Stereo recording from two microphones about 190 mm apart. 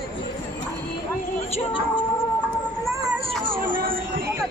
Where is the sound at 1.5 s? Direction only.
25° left (ahead or behind).